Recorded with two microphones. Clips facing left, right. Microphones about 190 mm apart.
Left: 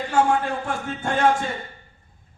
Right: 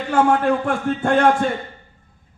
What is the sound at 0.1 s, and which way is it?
A man's voice, 55° right (ahead or behind).